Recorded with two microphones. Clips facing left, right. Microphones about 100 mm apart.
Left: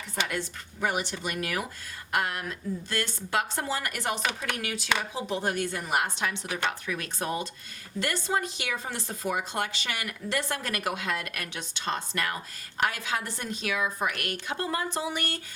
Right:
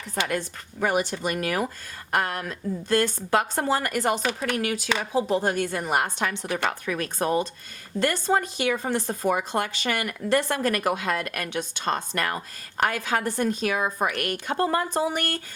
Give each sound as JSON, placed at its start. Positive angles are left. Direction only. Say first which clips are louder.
{"t": 0.3, "sound": "speech", "louder": "right 5 dB", "side_deg": -45}